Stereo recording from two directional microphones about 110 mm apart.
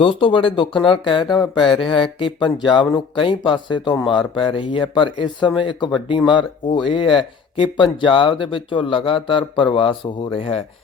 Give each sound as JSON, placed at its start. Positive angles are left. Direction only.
{"t": 0.0, "sound": "speech", "side_deg": 50}